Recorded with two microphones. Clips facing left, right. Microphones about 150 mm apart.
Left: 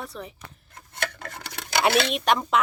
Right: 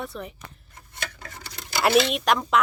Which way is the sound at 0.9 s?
60° left (ahead or behind).